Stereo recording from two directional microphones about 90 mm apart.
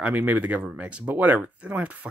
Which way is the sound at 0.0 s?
15° right (ahead or behind).